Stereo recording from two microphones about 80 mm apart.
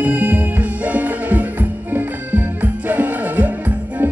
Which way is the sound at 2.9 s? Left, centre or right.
Right.